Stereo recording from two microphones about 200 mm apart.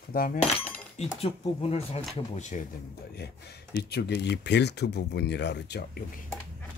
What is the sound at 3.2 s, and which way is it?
Speech, 55° left (ahead or behind).